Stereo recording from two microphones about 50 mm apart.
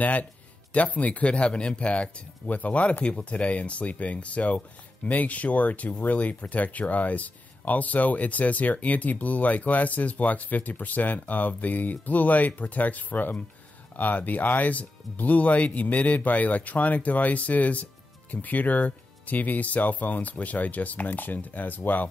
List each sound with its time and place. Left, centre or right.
0.0 s speech: left